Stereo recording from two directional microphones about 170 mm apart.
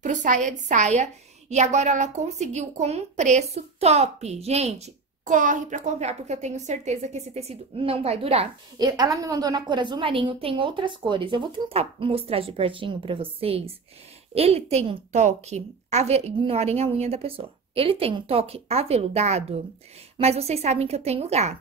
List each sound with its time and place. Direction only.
0.0 s a woman's voice: 45° right (ahead or behind)
8.7 s a woman's voice: 25° right (ahead or behind); by 21.5 s 40° right (ahead or behind)